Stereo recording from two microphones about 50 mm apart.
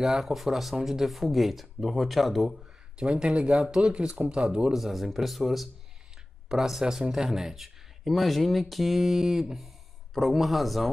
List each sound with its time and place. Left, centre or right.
0.0 s a man's voice: centre
2.6 s speech: centre
4.7 s a man's voice: centre